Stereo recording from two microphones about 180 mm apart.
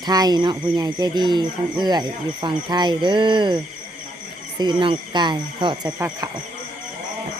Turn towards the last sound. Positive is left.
turn(degrees=-20)  # may be behind; listen again after turning